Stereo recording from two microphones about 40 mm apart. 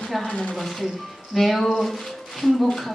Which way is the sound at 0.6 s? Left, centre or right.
Centre.